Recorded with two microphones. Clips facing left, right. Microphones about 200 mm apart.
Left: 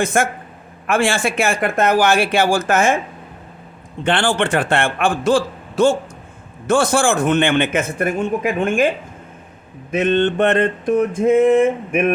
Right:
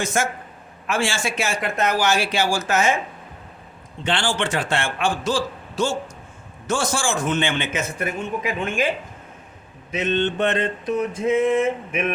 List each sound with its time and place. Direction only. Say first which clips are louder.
0.0 s a man's voice: left 5 dB; 55° left (ahead or behind)
4.0 s a man's voice: left 6 dB; 55° left (ahead or behind)
9.9 s a sound: left 6 dB; 55° left (ahead or behind)